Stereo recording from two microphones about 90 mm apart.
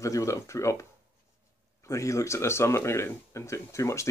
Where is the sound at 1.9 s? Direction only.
35° left (ahead or behind).